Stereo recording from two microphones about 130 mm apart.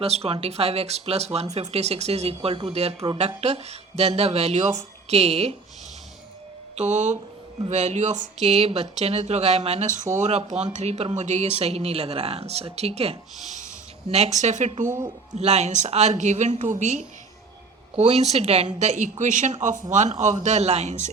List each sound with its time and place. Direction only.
0.0 s speech: 50° right (ahead or behind)
6.7 s speech: 65° right (ahead or behind)
10.2 s speech: 60° right (ahead or behind)
15.4 s speech: 60° right (ahead or behind)
17.9 s speech: 55° right (ahead or behind)